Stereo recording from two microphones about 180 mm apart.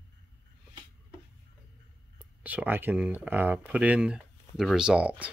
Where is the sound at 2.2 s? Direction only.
10° right (ahead or behind).